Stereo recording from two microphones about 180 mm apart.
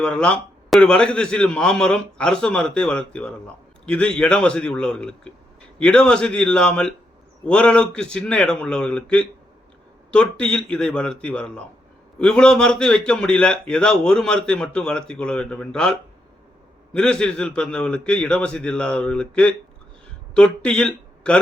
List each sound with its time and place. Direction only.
0.0 s a man's voice: 5° left (ahead or behind)